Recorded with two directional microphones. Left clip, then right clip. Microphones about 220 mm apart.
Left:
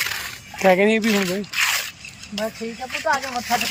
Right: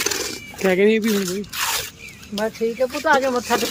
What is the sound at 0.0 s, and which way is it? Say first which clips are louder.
Coin: right 2 dB; 35° right (ahead or behind).